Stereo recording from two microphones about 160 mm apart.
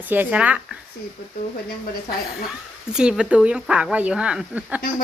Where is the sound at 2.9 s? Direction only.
5° right (ahead or behind).